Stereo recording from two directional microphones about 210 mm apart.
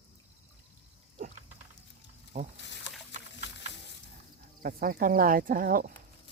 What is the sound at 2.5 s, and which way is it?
Speech, 60° left (ahead or behind).